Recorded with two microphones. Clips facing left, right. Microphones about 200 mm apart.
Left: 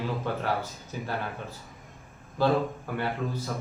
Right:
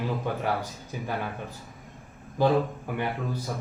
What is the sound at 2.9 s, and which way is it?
Speech, 15° right (ahead or behind).